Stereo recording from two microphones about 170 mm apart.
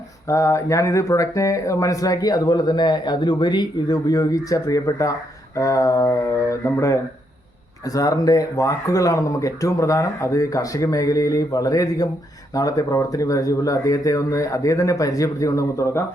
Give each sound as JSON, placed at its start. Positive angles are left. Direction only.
{"t": 0.3, "sound": "speech", "side_deg": 20}